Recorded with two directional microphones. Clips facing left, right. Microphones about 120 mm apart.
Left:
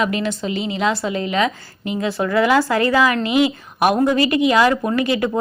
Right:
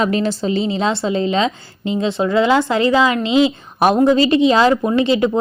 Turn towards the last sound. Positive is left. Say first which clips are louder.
# right 4 dB
turn(degrees=-25)  # may be behind; listen again after turning